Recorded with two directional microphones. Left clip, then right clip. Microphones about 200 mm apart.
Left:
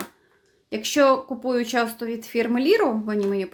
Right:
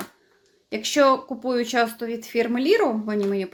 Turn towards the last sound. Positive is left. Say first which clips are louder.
# even
turn(degrees=5)  # may be behind; listen again after turning